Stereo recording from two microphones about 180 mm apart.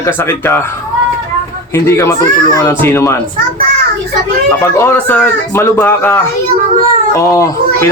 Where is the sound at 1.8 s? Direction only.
15° left (ahead or behind).